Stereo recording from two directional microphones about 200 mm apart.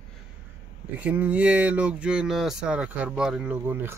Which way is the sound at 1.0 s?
5° right (ahead or behind).